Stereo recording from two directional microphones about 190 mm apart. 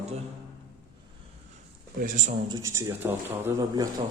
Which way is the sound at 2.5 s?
15° right (ahead or behind).